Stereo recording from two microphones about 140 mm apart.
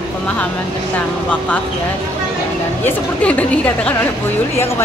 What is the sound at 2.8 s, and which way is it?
A woman's voice, 10° left (ahead or behind).